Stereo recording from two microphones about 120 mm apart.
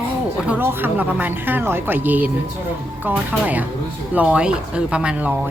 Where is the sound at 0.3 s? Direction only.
10° right (ahead or behind).